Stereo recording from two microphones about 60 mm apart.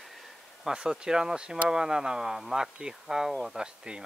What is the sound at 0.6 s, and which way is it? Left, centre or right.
Speech, centre.